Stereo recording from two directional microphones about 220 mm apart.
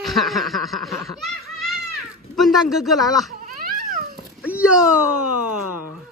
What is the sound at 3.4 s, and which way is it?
Babbling, 40° right (ahead or behind).